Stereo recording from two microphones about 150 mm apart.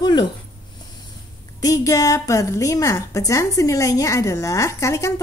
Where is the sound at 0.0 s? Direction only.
30° left (ahead or behind).